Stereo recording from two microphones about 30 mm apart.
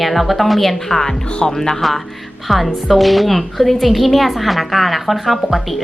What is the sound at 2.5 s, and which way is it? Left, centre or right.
A woman's voice, centre.